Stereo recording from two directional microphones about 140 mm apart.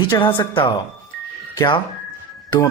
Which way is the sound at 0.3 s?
35° left (ahead or behind).